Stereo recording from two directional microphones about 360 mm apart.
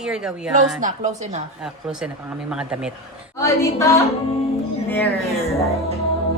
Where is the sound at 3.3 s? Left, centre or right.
Centre.